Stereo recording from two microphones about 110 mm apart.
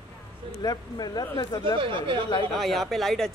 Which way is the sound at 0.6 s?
40° left (ahead or behind).